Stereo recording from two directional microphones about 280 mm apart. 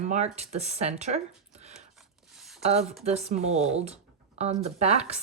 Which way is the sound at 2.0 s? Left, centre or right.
Centre.